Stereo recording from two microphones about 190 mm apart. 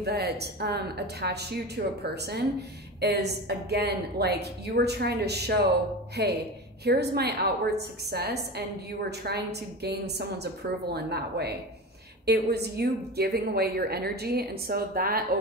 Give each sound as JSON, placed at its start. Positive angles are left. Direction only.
{"t": 0.0, "sound": "a woman's voice", "side_deg": -60}